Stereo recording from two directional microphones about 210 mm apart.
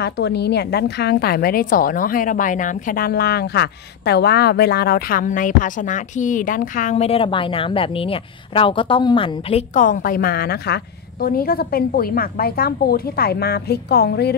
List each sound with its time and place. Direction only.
0.0 s a woman's voice: 50° left (ahead or behind)